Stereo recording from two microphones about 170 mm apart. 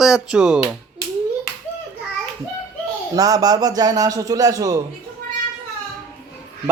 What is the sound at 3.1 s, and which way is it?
A man's voice, 20° right (ahead or behind).